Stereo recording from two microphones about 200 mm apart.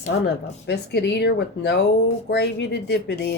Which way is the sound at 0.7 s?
60° left (ahead or behind).